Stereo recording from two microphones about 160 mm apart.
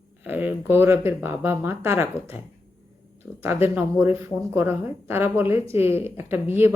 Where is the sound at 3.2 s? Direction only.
15° right (ahead or behind).